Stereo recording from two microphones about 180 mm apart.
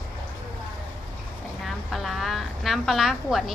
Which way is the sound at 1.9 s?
Centre (ahead or behind).